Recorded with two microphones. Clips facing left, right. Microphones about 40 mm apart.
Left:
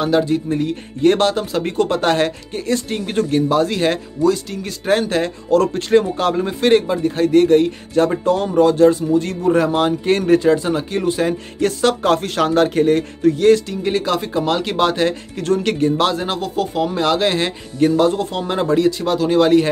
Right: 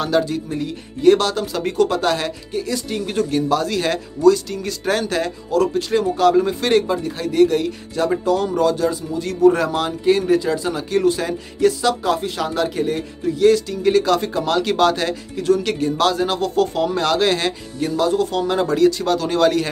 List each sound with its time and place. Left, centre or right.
0.0 s speech: left
5.5 s speech: left
9.4 s speech: left
11.6 s speech: left
13.8 s speech: left
15.3 s speech: left
17.7 s speech: left